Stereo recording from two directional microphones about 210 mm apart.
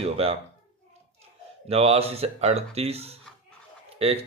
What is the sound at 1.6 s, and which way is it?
Speech, 30° right (ahead or behind).